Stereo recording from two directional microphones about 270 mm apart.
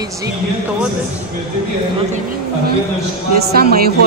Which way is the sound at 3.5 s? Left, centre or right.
Right.